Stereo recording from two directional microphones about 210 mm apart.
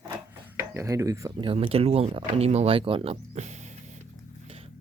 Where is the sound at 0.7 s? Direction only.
15° right (ahead or behind); by 4.0 s 35° right (ahead or behind).